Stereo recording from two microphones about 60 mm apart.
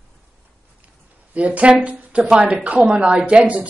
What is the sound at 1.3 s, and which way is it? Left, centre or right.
Speech, right.